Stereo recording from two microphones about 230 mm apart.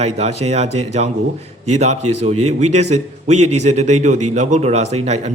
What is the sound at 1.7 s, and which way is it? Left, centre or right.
A man's voice, right.